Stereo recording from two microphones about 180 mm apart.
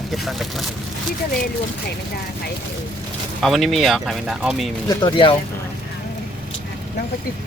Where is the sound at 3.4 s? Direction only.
Centre (ahead or behind).